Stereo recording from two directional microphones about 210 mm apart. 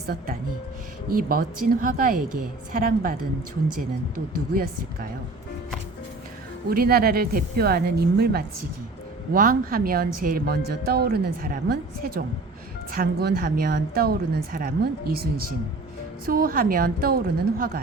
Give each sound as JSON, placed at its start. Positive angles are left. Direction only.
{"t": 1.1, "sound": "a woman's voice", "side_deg": -45}
{"t": 4.5, "sound": "a woman's voice", "side_deg": -45}
{"t": 6.7, "sound": "a woman's voice", "side_deg": -45}
{"t": 16.2, "sound": "a woman's voice", "side_deg": -45}